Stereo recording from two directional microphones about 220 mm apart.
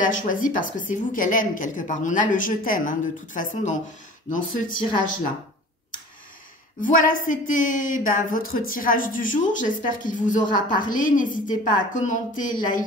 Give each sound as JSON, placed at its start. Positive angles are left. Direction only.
{"t": 0.0, "sound": "a woman's voice", "side_deg": 35}
{"t": 6.8, "sound": "a woman's voice", "side_deg": 35}